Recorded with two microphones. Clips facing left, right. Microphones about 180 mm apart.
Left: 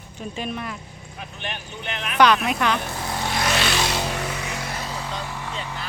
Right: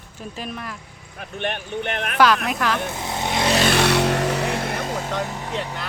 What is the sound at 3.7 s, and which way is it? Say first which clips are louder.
Vehicle: right 7 dB; 65° right (ahead or behind).